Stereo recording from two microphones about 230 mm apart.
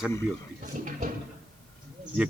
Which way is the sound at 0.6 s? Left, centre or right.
Right.